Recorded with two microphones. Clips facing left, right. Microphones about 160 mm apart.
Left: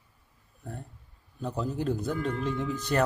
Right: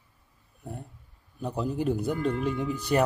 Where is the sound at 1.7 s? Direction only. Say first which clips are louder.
Right 3 dB; 15° right (ahead or behind).